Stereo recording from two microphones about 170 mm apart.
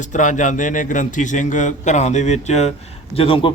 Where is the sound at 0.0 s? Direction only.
45° left (ahead or behind).